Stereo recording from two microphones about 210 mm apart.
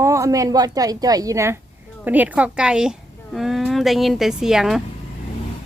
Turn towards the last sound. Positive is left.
turn(degrees=0)  # may be behind; listen again after turning